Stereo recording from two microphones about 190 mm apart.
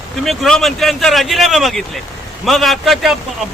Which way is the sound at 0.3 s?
Centre (ahead or behind).